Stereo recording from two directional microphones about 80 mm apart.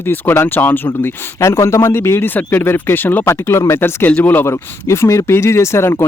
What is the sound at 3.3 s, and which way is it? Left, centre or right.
Speech, left.